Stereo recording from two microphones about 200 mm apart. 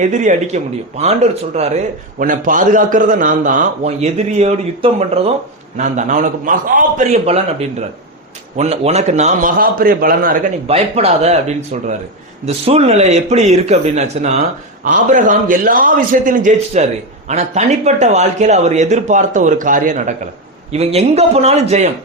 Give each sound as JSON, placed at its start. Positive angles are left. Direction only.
{"t": 0.0, "sound": "speech", "side_deg": -35}
{"t": 8.5, "sound": "speech", "side_deg": -30}
{"t": 10.7, "sound": "speech", "side_deg": -30}